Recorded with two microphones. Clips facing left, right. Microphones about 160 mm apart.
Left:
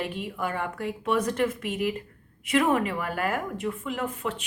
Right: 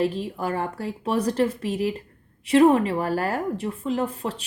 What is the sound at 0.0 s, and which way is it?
A woman's voice, 35° right (ahead or behind).